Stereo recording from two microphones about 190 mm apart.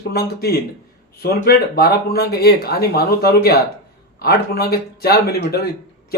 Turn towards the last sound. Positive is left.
turn(degrees=55)  # may be behind; listen again after turning